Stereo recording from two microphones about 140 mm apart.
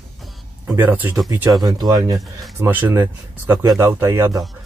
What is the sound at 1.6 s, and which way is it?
Speech, 30° right (ahead or behind).